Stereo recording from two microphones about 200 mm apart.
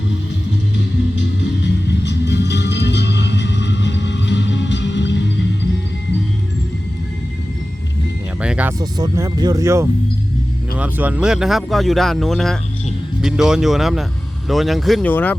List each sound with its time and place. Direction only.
0.8 s music: 65° left (ahead or behind)
8.4 s music: 5° right (ahead or behind)
8.8 s speech: 15° right (ahead or behind); by 15.4 s 10° left (ahead or behind)